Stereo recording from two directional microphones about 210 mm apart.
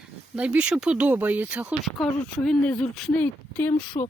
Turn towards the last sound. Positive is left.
turn(degrees=30)  # may be behind; listen again after turning